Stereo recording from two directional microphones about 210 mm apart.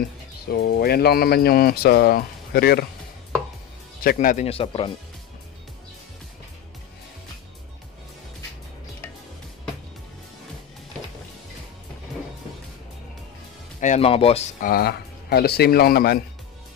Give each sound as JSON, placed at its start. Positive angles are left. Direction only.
{"t": 0.5, "sound": "speech", "side_deg": 50}
{"t": 4.0, "sound": "speech", "side_deg": 40}
{"t": 4.5, "sound": "speech", "side_deg": 25}
{"t": 13.7, "sound": "speech", "side_deg": 35}
{"t": 14.6, "sound": "speech", "side_deg": 45}